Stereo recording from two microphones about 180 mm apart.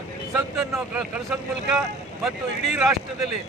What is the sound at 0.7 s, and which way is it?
Speech, 5° right (ahead or behind).